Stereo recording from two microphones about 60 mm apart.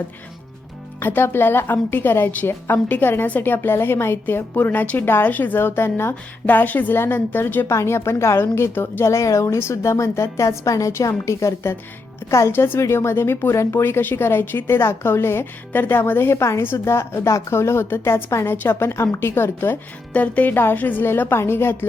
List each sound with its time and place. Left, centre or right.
0.9 s a woman's voice: left
6.4 s a woman's voice: left
7.7 s a woman's voice: left
18.5 s a woman's voice: left
20.1 s a woman's voice: left